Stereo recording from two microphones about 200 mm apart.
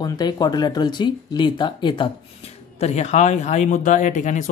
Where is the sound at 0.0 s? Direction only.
20° left (ahead or behind).